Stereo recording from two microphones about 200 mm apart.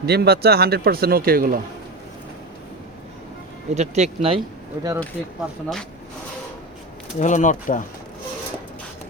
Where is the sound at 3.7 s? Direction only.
35° right (ahead or behind).